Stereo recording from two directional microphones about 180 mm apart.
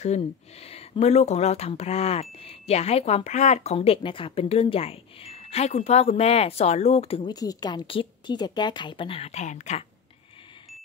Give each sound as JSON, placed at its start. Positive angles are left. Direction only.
{"t": 0.0, "sound": "speech", "side_deg": 35}
{"t": 7.3, "sound": "a woman's voice", "side_deg": 20}